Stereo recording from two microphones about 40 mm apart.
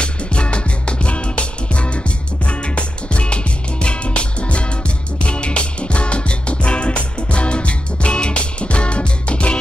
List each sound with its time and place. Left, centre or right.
0.0 s music: left